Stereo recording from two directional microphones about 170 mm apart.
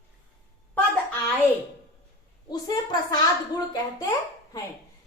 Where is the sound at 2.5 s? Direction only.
25° left (ahead or behind).